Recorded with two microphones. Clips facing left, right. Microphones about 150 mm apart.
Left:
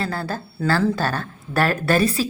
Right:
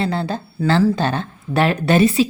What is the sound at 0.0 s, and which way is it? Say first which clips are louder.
Speech: right 5 dB; 25° right (ahead or behind).